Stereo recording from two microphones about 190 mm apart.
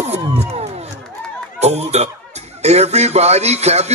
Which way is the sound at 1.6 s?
35° right (ahead or behind).